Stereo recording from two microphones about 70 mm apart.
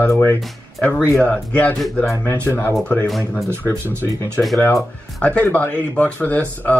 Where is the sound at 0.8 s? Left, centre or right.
Left.